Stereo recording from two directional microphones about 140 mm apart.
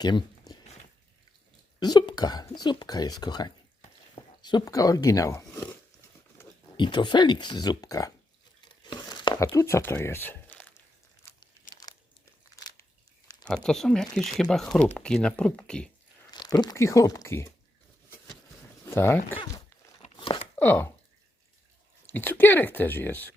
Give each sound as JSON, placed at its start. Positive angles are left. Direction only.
{"t": 0.0, "sound": "a sound", "side_deg": 30}
{"t": 1.8, "sound": "speech", "side_deg": 30}
{"t": 6.7, "sound": "speech", "side_deg": 35}
{"t": 8.8, "sound": "a sound", "side_deg": 30}
{"t": 9.6, "sound": "speech", "side_deg": 20}
{"t": 13.5, "sound": "speech", "side_deg": 5}
{"t": 16.3, "sound": "speech", "side_deg": 30}
{"t": 18.9, "sound": "speech", "side_deg": 15}
{"t": 20.1, "sound": "chopping", "side_deg": 35}
{"t": 20.6, "sound": "speech", "side_deg": 15}
{"t": 22.0, "sound": "speech", "side_deg": 15}